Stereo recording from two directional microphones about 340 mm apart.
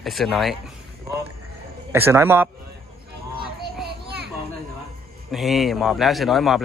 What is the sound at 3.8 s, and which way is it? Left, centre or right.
Child singing, right.